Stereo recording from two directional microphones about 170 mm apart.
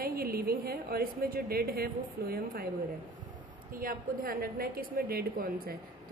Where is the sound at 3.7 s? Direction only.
55° right (ahead or behind).